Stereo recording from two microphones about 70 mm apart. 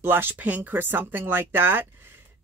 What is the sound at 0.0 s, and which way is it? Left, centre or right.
A woman's voice, right.